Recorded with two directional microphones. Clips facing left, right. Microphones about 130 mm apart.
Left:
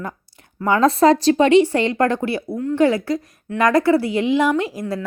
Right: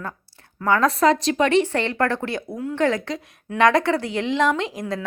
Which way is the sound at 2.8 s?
10° left (ahead or behind).